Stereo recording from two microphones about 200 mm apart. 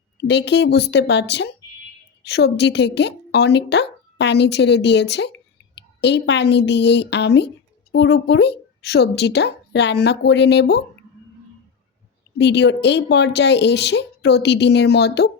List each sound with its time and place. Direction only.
0.2 s speech: 60° left (ahead or behind)
12.4 s speech: 60° left (ahead or behind)